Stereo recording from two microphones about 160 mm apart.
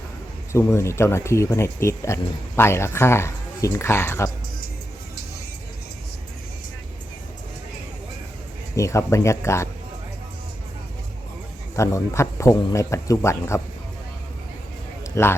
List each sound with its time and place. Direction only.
0.5 s speech: 15° left (ahead or behind)
8.7 s speech: 20° left (ahead or behind)
11.8 s speech: 20° left (ahead or behind)
15.0 s a sound: 15° left (ahead or behind)